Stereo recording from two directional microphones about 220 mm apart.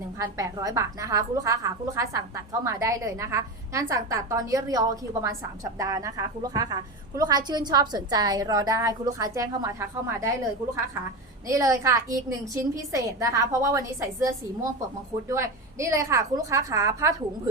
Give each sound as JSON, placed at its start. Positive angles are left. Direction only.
{"t": 0.2, "sound": "a woman's voice", "side_deg": -15}
{"t": 11.4, "sound": "a woman's voice", "side_deg": -15}